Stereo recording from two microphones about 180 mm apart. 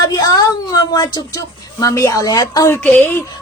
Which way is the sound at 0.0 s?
20° left (ahead or behind).